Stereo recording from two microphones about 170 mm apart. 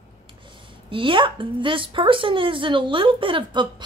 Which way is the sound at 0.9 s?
30° right (ahead or behind).